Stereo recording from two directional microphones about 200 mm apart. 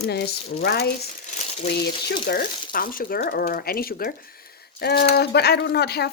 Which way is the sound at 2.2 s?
50° left (ahead or behind).